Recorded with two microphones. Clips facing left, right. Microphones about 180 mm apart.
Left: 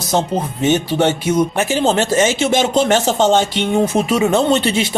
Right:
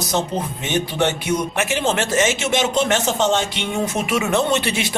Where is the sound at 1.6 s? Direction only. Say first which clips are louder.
Left 5 dB; 30° left (ahead or behind).